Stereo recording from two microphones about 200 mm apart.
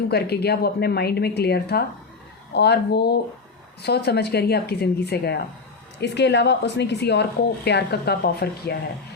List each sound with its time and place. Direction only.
0.1 s speech: 55° left (ahead or behind)